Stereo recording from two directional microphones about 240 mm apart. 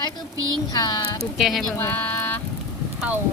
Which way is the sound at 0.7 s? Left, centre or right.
Centre.